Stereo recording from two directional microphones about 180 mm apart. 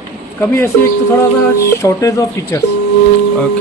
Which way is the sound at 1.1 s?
15° left (ahead or behind).